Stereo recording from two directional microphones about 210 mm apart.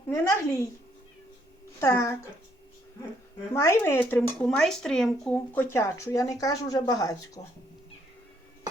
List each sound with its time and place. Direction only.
0.1 s speech: 15° left (ahead or behind)
1.8 s speech: 15° left (ahead or behind)
3.5 s speech: 15° left (ahead or behind)